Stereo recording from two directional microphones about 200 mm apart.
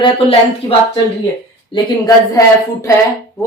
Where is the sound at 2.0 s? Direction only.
15° left (ahead or behind).